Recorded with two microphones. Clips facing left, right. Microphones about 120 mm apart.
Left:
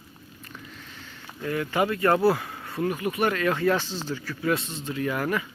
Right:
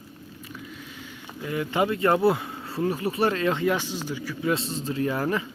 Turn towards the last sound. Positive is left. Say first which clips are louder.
# right 1 dB
turn(degrees=-30)  # may be behind; listen again after turning